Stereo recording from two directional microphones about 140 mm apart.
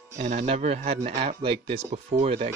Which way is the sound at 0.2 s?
55° right (ahead or behind).